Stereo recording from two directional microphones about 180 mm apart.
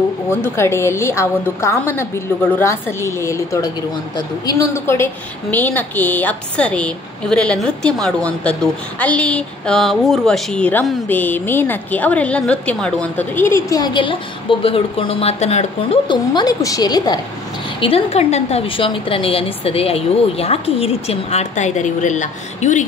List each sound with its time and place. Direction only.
0.3 s a woman's voice: 15° left (ahead or behind); by 22.8 s 45° left (ahead or behind)